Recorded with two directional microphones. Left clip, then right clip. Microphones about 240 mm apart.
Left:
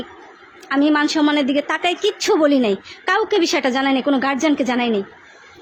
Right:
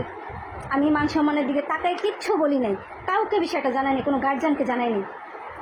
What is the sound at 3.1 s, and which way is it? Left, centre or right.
A woman's voice, left.